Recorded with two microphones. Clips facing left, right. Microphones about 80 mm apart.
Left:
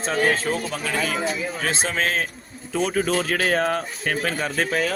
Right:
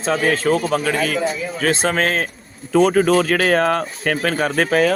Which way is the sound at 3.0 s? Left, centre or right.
Right.